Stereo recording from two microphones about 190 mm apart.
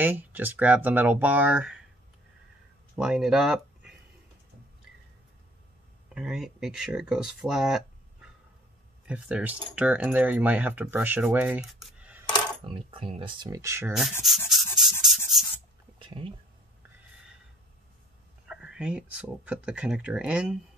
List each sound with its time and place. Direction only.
0.0 s speech: 10° right (ahead or behind)
3.0 s speech: 5° right (ahead or behind)
6.1 s speech: centre (ahead or behind)
9.0 s speech: 5° right (ahead or behind)
12.6 s speech: 30° right (ahead or behind)
14.2 s rub: centre (ahead or behind)
16.0 s a sound: 25° right (ahead or behind)
18.5 s speech: 5° right (ahead or behind)